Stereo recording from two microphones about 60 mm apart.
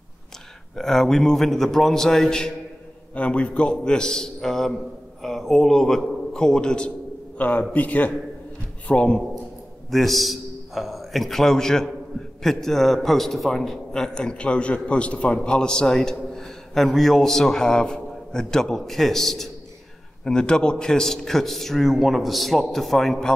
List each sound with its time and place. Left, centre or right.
0.7 s a man's voice: centre
7.3 s a man's voice: left
9.8 s a man's voice: centre